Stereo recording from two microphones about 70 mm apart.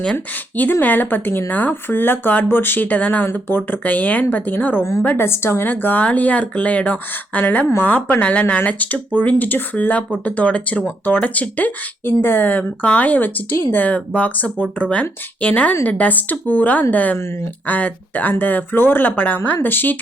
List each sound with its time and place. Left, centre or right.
0.0 s speech: centre
5.1 s speech: left